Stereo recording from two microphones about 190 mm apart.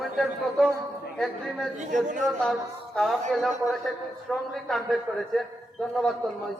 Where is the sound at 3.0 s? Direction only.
5° left (ahead or behind).